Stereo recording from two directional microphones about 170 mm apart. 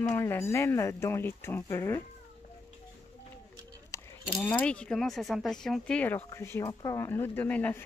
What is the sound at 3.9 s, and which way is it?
Speech, 15° left (ahead or behind).